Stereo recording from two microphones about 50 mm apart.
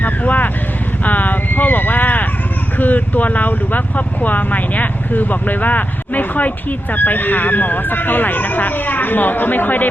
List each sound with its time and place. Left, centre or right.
0.0 s speech: left
1.0 s a sound: left
2.7 s speech: left